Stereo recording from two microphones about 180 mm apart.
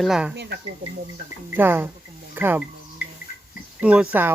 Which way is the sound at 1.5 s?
10° right (ahead or behind).